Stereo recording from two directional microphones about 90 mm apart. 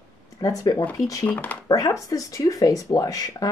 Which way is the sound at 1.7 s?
40° left (ahead or behind).